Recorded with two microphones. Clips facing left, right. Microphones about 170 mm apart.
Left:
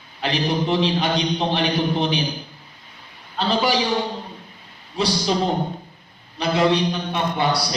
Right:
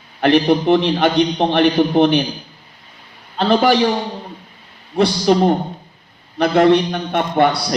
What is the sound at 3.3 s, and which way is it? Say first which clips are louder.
Speech: right 7 dB; 55° right (ahead or behind).